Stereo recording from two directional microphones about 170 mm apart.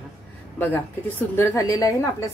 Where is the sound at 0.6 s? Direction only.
10° left (ahead or behind).